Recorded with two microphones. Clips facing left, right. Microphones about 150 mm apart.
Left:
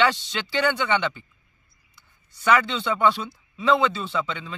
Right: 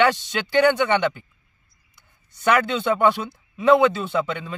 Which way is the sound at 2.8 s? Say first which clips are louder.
Right 3 dB; 50° right (ahead or behind).